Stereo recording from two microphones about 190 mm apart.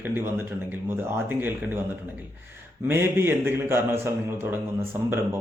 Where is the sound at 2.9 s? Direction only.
10° right (ahead or behind).